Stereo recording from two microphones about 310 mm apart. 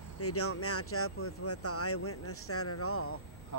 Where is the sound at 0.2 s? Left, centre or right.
Left.